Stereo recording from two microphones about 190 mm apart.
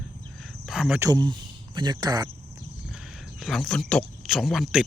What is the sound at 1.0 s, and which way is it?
Speech, 20° right (ahead or behind).